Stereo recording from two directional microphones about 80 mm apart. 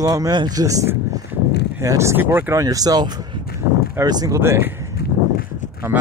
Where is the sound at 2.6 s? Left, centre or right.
Right.